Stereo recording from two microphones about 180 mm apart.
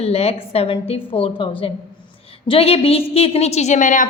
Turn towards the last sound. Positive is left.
turn(degrees=45)  # may be behind; listen again after turning